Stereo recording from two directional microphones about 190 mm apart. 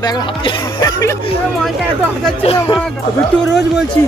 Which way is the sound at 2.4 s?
30° left (ahead or behind).